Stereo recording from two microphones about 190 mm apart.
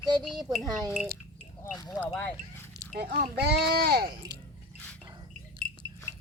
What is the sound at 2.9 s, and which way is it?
A child's voice, 55° right (ahead or behind).